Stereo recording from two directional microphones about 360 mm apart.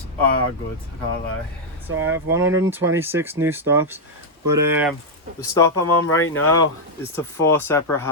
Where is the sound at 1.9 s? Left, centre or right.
Right.